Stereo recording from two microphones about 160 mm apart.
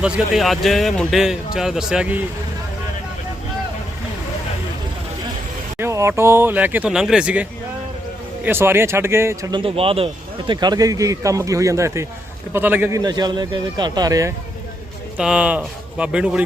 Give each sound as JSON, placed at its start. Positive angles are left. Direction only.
{"t": 0.0, "sound": "speech", "side_deg": 0}
{"t": 5.8, "sound": "speech", "side_deg": -20}
{"t": 8.4, "sound": "speech", "side_deg": -15}
{"t": 9.6, "sound": "speech", "side_deg": -35}
{"t": 13.0, "sound": "speech", "side_deg": -25}
{"t": 15.2, "sound": "speech", "side_deg": -5}